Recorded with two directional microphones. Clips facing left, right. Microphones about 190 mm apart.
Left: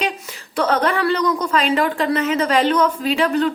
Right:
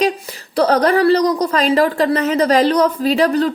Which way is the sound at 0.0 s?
35° right (ahead or behind).